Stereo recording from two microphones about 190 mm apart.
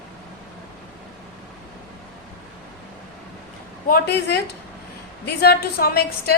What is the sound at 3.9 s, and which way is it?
A woman's voice, 60° left (ahead or behind).